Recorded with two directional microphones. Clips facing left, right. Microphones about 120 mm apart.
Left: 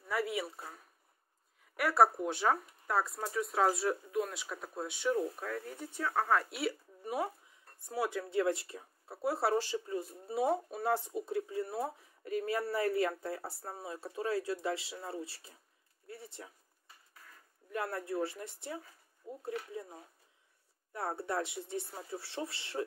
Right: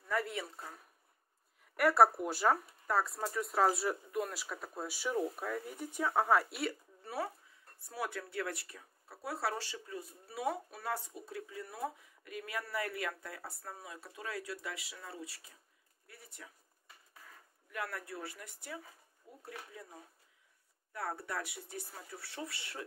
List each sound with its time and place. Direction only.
0.1 s speech: 5° left (ahead or behind)
1.8 s speech: centre (ahead or behind)
7.0 s speech: 15° left (ahead or behind)
17.6 s speech: 30° left (ahead or behind)